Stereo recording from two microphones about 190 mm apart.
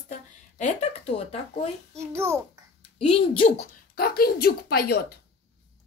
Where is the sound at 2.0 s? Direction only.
15° right (ahead or behind).